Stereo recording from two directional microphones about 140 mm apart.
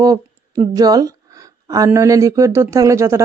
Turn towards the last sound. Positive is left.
turn(degrees=-20)  # may be behind; listen again after turning